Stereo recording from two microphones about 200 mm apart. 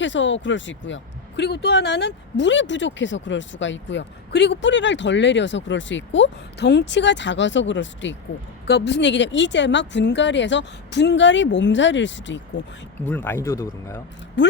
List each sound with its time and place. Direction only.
0.0 s speech: 65° left (ahead or behind)
13.1 s speech: 10° left (ahead or behind)